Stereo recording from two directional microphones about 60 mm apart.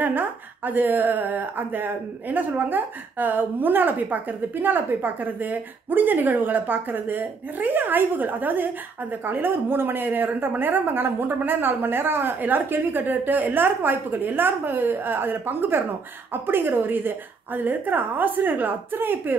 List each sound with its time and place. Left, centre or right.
0.0 s speech: right